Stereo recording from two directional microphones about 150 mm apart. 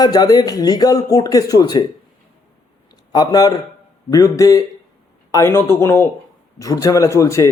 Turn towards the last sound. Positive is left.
turn(degrees=20)  # may be behind; listen again after turning